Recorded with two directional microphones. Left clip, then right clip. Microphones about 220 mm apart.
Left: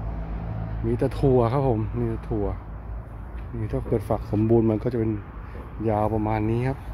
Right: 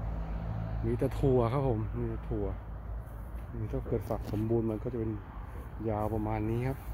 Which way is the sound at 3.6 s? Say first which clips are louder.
Left 9 dB; 15° left (ahead or behind).